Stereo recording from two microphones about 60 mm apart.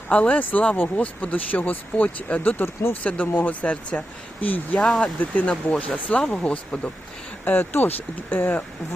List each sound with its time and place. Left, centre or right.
0.1 s speech: left
4.9 s speech: centre
5.2 s speech: left
7.4 s speech: left